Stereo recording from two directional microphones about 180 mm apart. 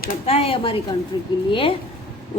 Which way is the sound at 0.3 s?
35° left (ahead or behind).